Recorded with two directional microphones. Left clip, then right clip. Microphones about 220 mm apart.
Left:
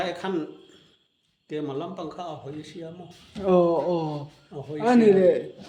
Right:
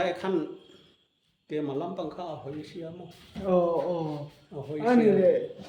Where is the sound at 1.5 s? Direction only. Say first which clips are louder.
Even; 5° left (ahead or behind).